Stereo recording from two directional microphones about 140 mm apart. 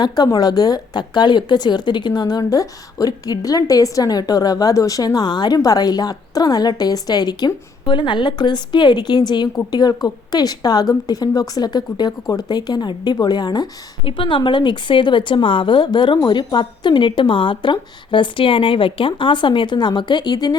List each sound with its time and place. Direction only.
0.0 s speech: 30° left (ahead or behind)